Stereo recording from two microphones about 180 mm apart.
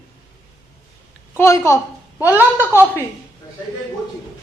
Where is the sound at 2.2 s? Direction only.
10° right (ahead or behind).